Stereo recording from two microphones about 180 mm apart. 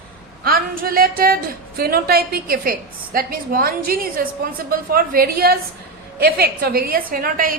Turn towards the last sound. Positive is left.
turn(degrees=-50)  # may be behind; listen again after turning